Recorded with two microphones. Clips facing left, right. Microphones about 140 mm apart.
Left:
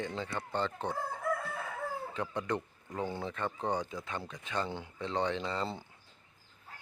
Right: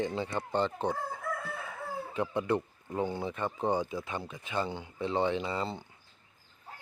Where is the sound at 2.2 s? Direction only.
10° right (ahead or behind).